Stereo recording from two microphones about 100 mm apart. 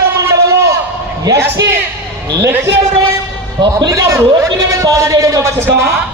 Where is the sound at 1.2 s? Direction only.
35° right (ahead or behind).